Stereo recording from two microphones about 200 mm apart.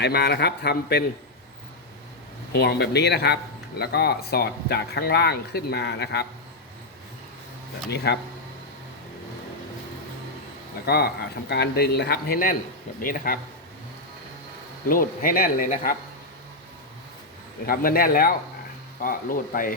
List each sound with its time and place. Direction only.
0.0 s a man's voice: 55° left (ahead or behind)
2.6 s a man's voice: 55° left (ahead or behind)
7.9 s a man's voice: 55° left (ahead or behind)
10.8 s speech: 55° left (ahead or behind)
14.8 s speech: 45° left (ahead or behind)
17.7 s speech: 45° left (ahead or behind)